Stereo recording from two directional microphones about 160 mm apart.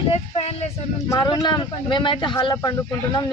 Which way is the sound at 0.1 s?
40° left (ahead or behind).